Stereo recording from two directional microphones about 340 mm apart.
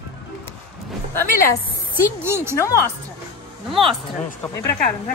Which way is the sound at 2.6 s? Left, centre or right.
Centre.